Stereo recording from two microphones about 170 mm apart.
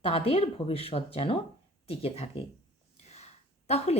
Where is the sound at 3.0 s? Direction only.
40° left (ahead or behind).